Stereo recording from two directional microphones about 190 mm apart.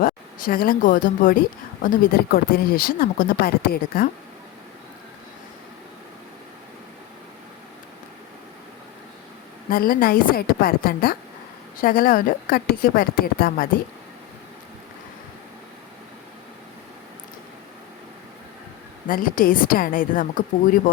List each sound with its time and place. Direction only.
0.0 s speech: 50° left (ahead or behind)
9.6 s speech: 50° left (ahead or behind)
19.0 s speech: 45° left (ahead or behind)